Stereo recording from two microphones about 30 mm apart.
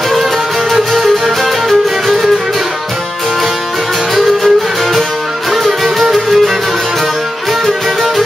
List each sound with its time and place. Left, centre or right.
0.7 s music: centre
4.1 s music: centre
5.5 s music: centre